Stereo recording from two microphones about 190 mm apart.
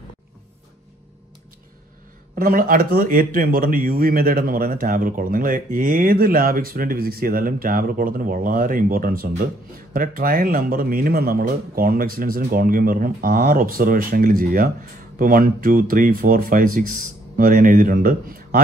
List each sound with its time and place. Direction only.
2.3 s a man's voice: 50° right (ahead or behind)